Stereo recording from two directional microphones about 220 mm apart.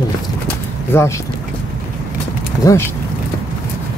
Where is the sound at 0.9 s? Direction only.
10° left (ahead or behind).